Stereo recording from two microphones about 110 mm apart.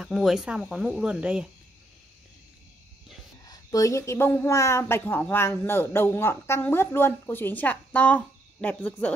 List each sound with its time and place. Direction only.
0.0 s speech: centre (ahead or behind)
3.4 s speech: 30° left (ahead or behind); by 9.1 s 15° left (ahead or behind)